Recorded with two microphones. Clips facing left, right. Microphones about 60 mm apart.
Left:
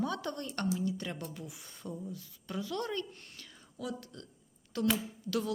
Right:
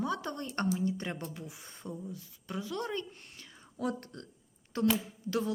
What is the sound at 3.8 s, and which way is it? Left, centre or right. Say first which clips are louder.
A woman's voice: right 5 dB; right.